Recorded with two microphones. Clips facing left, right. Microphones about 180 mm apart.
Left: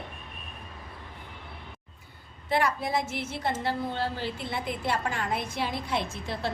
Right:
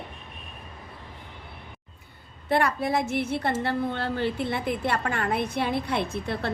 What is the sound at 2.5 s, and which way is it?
A woman's voice, 55° right (ahead or behind).